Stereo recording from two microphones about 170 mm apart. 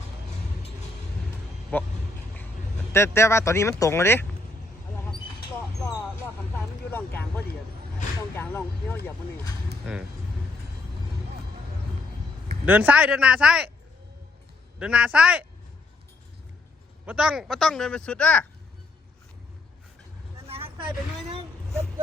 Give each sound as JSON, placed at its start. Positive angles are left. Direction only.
{"t": 1.7, "sound": "speech", "side_deg": 10}
{"t": 2.9, "sound": "speech", "side_deg": 15}
{"t": 6.9, "sound": "speech", "side_deg": 10}
{"t": 12.6, "sound": "speech", "side_deg": -10}
{"t": 14.8, "sound": "speech", "side_deg": -5}
{"t": 17.1, "sound": "speech", "side_deg": -5}
{"t": 20.5, "sound": "vehicle", "side_deg": -35}